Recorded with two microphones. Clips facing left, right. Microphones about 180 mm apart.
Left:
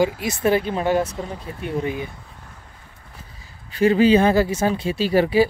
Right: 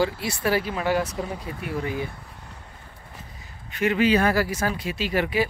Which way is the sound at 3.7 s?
30° left (ahead or behind).